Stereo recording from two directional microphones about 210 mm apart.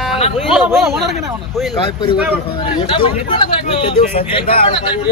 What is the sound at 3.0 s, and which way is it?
Speech, 25° left (ahead or behind).